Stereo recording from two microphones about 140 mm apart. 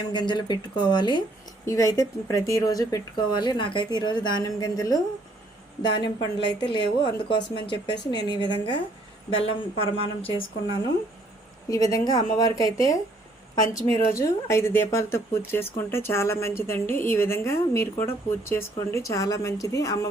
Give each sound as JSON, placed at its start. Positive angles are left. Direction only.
{"t": 0.1, "sound": "speech", "side_deg": 30}
{"t": 11.7, "sound": "speech", "side_deg": 25}